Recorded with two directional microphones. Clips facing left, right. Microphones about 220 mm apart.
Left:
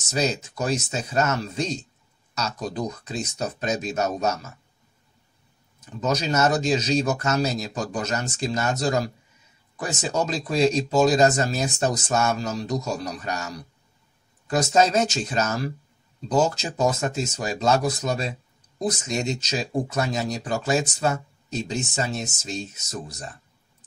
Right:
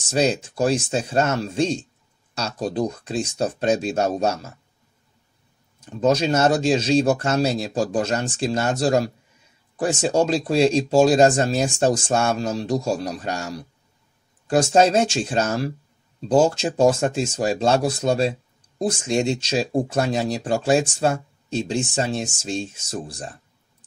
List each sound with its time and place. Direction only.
0.1 s a man's voice: 30° right (ahead or behind)
5.9 s a man's voice: 30° right (ahead or behind)